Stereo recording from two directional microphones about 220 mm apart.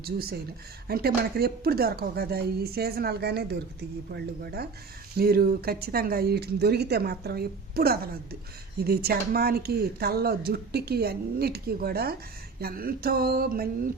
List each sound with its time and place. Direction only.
0.0 s speech: 45° right (ahead or behind)